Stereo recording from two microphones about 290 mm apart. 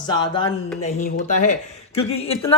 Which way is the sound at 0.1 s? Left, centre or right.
Centre.